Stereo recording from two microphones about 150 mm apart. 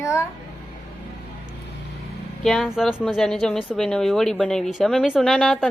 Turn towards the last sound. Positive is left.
turn(degrees=5)  # may be behind; listen again after turning